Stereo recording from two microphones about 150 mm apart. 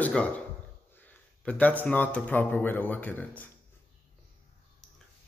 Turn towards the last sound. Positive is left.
turn(degrees=10)  # may be behind; listen again after turning